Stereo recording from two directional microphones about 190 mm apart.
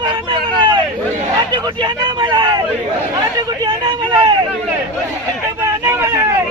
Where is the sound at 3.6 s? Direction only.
20° right (ahead or behind).